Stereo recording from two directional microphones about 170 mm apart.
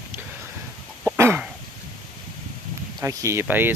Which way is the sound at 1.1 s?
15° right (ahead or behind).